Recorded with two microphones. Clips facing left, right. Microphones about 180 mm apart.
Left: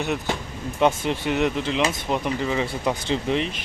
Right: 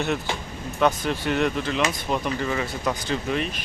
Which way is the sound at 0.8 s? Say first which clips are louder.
Left 1 dB; 25° left (ahead or behind).